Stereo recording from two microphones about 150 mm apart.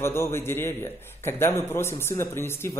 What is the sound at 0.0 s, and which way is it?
Speech, 15° left (ahead or behind).